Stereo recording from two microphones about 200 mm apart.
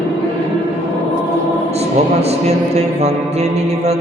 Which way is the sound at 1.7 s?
30° right (ahead or behind).